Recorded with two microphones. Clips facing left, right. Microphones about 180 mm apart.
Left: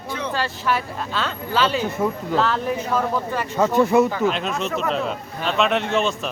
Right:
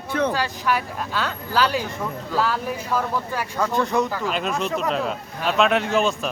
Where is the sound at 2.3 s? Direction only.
5° right (ahead or behind).